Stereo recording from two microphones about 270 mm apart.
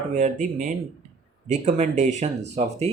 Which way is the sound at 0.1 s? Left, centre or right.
Right.